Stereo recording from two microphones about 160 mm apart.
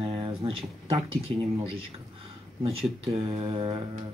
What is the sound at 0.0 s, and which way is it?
Speech, 35° right (ahead or behind).